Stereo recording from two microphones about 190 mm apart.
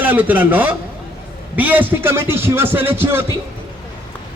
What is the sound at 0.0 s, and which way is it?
A man's voice, 10° right (ahead or behind).